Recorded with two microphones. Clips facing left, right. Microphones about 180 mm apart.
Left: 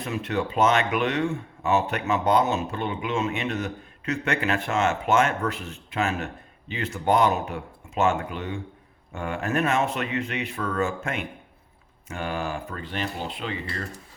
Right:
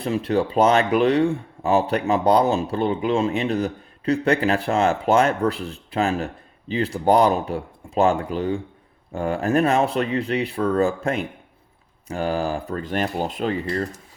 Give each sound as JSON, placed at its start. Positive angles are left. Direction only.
{"t": 0.0, "sound": "speech", "side_deg": -35}